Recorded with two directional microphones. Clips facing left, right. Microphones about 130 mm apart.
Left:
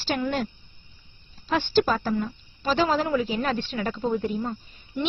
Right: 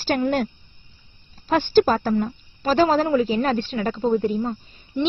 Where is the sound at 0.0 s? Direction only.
45° right (ahead or behind).